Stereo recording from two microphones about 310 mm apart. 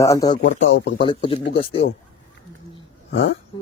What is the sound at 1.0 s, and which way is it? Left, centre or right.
Speech, centre.